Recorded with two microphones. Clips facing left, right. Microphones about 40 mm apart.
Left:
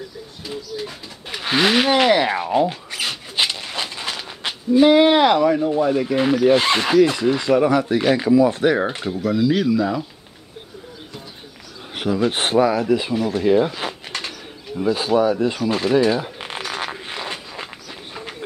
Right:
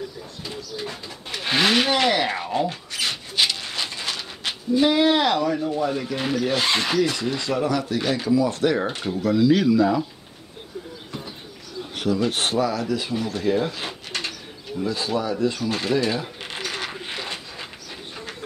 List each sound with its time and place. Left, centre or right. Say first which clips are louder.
0.4 s speech: left 4 dB; centre
1.3 s a sound: left 3 dB; centre
4.7 s speech: left 6 dB; left
6.5 s speech: left 6 dB; left
9.1 s speech: right 1 dB; centre
11.9 s speech: left 3 dB; left
13.8 s pigeon: left 2 dB; centre
14.8 s speech: left 7 dB; left
16.1 s a sound: left 5 dB; left